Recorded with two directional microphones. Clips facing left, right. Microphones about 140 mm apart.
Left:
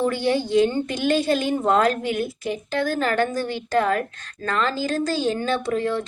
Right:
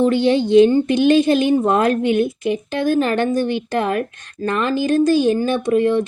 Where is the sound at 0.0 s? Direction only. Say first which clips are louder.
Right 6 dB; 20° right (ahead or behind).